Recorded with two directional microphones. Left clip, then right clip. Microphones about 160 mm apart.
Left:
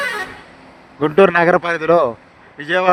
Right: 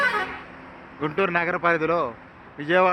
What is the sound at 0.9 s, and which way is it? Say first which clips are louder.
A man's voice: left 11 dB; 60° left (ahead or behind).